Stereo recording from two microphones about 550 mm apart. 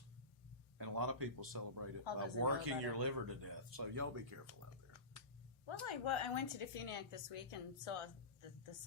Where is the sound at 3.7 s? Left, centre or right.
Right.